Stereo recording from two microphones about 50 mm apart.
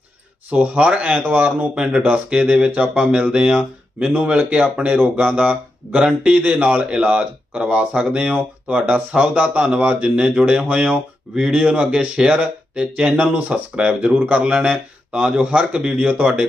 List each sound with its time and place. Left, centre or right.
0.5 s speech: right
1.7 s speech: right
10.7 s speech: right
11.3 s speech: centre
14.2 s speech: right
14.4 s speech: right